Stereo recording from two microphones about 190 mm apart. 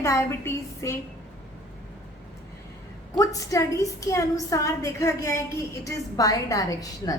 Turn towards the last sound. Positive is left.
turn(degrees=20)  # may be behind; listen again after turning